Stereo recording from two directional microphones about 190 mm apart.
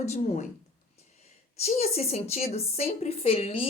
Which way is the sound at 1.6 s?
35° left (ahead or behind).